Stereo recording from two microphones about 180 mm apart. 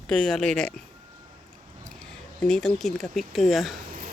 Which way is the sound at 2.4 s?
5° left (ahead or behind).